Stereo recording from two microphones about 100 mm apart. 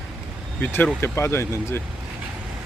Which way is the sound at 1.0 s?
25° left (ahead or behind).